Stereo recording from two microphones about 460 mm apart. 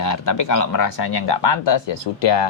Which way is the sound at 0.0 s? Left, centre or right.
Left.